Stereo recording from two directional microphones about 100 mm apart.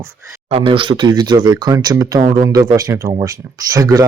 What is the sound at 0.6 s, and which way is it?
Speech, 55° right (ahead or behind).